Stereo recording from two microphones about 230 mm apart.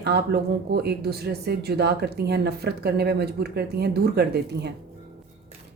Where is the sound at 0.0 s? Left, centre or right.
Right.